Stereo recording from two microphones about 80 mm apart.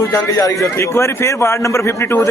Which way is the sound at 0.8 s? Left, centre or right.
Left.